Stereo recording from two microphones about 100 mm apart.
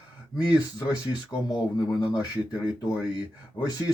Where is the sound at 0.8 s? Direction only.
45° left (ahead or behind).